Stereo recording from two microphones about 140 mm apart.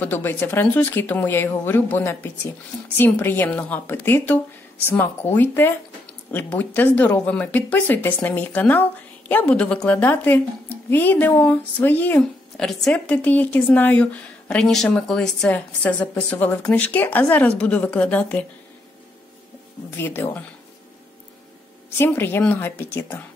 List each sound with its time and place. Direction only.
0.0 s a woman's voice: 15° left (ahead or behind)
20.0 s a woman's voice: 15° left (ahead or behind)
21.9 s a woman's voice: 15° left (ahead or behind)